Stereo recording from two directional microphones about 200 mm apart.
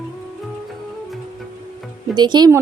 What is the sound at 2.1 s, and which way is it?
Speech, 20° right (ahead or behind).